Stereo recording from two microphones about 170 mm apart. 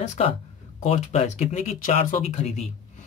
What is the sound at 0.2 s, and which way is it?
Speech, 40° left (ahead or behind).